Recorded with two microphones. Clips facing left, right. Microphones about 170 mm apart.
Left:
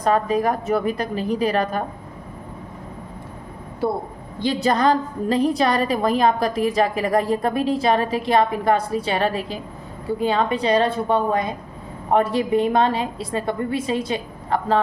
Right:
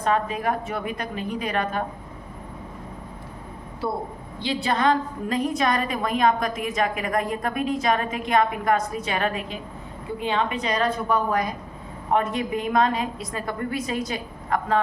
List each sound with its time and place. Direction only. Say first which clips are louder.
0.0 s a woman's voice: left 5 dB; 40° left (ahead or behind)
4.4 s a woman's voice: left 5 dB; 45° left (ahead or behind)